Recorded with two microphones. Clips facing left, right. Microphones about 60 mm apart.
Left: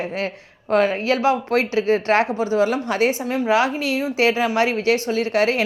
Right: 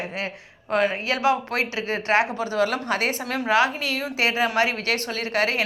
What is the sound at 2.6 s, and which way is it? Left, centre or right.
A woman's voice, right.